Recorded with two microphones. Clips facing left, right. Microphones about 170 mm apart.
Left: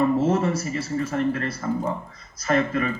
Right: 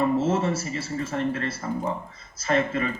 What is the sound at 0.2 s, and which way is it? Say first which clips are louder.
A man's voice: left 2 dB; 30° right (ahead or behind).